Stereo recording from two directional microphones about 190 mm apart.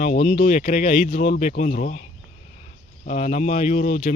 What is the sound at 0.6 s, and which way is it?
Speech, 50° left (ahead or behind).